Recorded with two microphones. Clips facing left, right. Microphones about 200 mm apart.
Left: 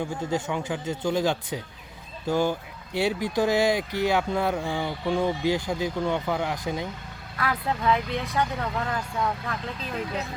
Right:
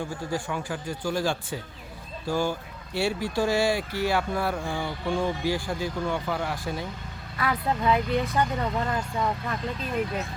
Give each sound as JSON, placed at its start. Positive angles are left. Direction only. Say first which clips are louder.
{"t": 0.3, "sound": "speech", "louder": "left 2 dB", "side_deg": 20}
{"t": 7.3, "sound": "speech", "louder": "right 1 dB", "side_deg": 0}